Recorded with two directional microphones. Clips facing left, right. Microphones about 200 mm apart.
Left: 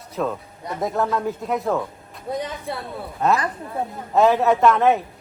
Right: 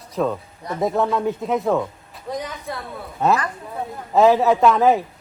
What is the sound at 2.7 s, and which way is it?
Speech, 30° left (ahead or behind).